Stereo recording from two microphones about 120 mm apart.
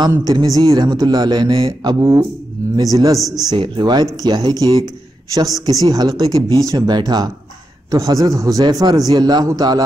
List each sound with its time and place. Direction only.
0.2 s a man's voice: 35° right (ahead or behind)
2.7 s a man's voice: 30° right (ahead or behind)
3.2 s a man's voice: centre (ahead or behind)
3.5 s a man's voice: 40° right (ahead or behind)